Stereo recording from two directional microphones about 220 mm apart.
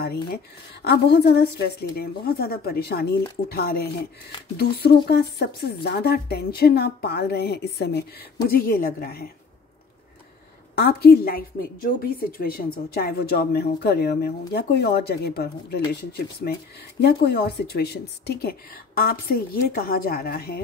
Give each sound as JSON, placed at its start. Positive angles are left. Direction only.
{"t": 0.8, "sound": "a woman's voice", "side_deg": 50}
{"t": 10.8, "sound": "a woman's voice", "side_deg": 45}